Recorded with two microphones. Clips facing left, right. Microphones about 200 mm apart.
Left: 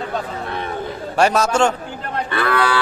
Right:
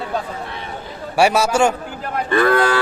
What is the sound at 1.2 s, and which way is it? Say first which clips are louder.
A man's voice: right 1 dB; 10° right (ahead or behind).